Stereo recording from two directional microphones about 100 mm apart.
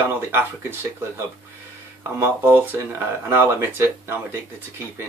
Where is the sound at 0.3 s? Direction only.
25° right (ahead or behind).